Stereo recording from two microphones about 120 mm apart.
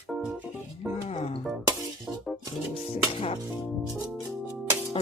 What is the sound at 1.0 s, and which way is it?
Music, 55° left (ahead or behind).